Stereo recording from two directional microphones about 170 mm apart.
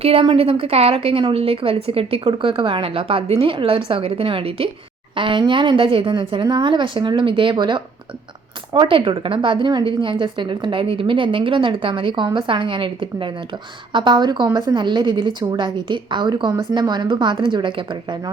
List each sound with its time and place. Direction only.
0.0 s a woman's voice: 35° right (ahead or behind)